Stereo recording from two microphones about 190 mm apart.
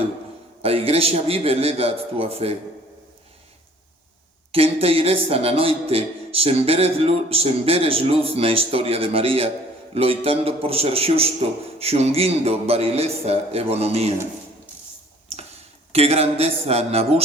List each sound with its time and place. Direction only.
0.6 s a man's voice: 30° right (ahead or behind)
4.5 s a man's voice: 30° right (ahead or behind)
15.3 s a sound: 35° right (ahead or behind)
15.9 s a man's voice: 30° right (ahead or behind)